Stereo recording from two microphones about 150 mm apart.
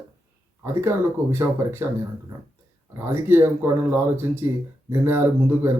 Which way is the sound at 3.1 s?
15° right (ahead or behind).